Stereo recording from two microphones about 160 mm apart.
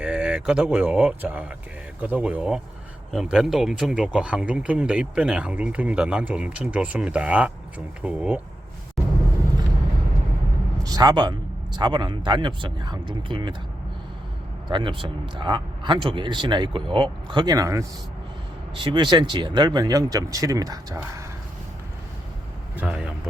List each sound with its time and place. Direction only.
0.0 s speech: 5° right (ahead or behind)
10.8 s speech: 25° right (ahead or behind)
14.7 s speech: 30° right (ahead or behind)
22.8 s speech: 5° right (ahead or behind)